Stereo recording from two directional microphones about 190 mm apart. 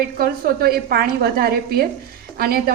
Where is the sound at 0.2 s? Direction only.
50° right (ahead or behind).